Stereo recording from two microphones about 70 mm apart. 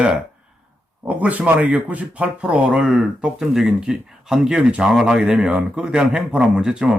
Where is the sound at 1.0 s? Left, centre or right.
Centre.